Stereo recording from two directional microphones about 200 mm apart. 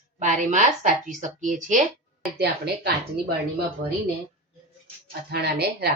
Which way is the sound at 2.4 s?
55° right (ahead or behind).